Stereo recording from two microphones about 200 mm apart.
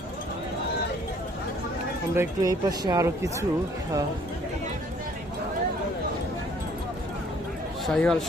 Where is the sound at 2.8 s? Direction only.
15° right (ahead or behind).